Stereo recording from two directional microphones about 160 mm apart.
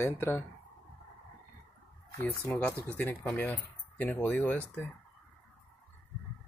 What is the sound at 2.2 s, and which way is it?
Speech, 10° left (ahead or behind).